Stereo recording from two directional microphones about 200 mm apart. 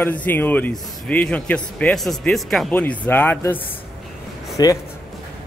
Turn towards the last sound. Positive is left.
turn(degrees=15)  # may be behind; listen again after turning